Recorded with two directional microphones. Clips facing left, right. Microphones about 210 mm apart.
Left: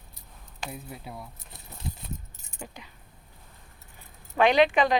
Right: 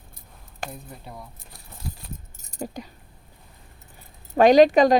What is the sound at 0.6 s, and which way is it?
Speech, 5° left (ahead or behind).